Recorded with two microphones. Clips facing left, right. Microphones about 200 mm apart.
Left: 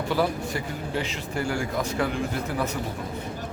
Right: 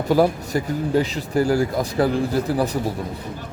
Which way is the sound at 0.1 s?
40° right (ahead or behind).